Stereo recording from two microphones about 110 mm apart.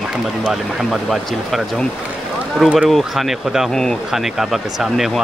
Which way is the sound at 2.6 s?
10° right (ahead or behind).